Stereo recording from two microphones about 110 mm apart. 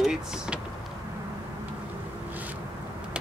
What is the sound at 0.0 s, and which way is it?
Vehicle, 5° right (ahead or behind).